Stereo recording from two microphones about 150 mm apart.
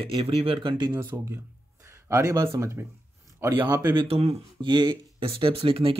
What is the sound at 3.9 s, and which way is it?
Speech, 40° right (ahead or behind).